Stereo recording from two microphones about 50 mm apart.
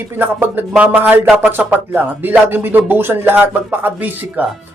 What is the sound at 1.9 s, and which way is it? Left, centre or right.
Speech, right.